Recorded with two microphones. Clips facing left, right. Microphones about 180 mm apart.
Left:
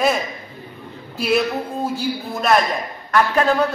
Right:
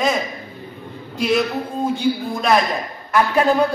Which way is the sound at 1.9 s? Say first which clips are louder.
Right 4 dB; centre (ahead or behind).